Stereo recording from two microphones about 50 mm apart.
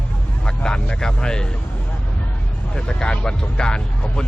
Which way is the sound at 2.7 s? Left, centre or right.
Centre.